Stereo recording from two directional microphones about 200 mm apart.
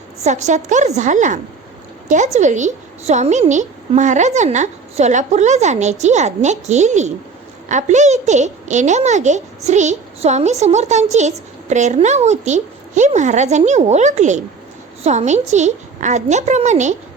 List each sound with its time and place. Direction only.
0.2 s a child's voice: 35° right (ahead or behind)